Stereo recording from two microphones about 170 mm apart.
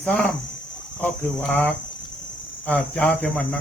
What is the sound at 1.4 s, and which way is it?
Speech, 10° left (ahead or behind).